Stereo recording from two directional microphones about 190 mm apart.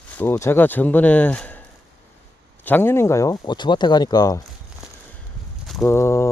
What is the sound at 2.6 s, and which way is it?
Speech, 10° left (ahead or behind).